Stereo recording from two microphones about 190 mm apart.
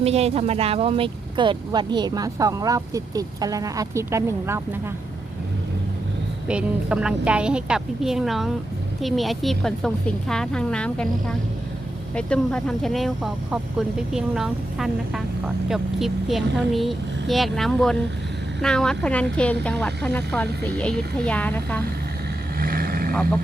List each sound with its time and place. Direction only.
0.0 s speech: 35° right (ahead or behind); by 4.8 s 15° right (ahead or behind)
6.5 s a woman's voice: 5° right (ahead or behind)
22.5 s vehicle: 50° right (ahead or behind)